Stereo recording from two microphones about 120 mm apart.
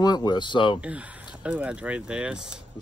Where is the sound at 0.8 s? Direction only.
10° right (ahead or behind).